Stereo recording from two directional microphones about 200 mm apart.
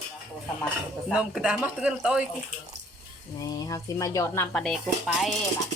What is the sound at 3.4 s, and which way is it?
A woman's voice, 20° left (ahead or behind).